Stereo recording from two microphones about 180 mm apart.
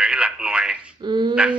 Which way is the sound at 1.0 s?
25° right (ahead or behind).